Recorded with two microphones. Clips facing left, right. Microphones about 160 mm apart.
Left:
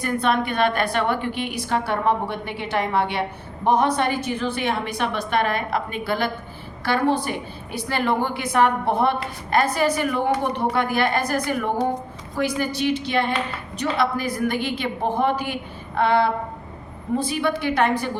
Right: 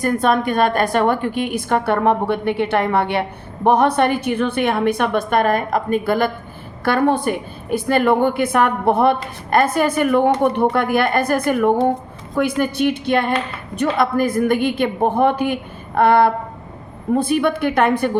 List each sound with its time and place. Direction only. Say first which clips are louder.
0.0 s a woman's voice: right 5 dB; 45° right (ahead or behind)